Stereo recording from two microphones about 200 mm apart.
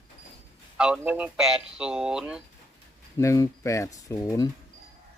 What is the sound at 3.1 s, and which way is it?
Speech, 15° left (ahead or behind).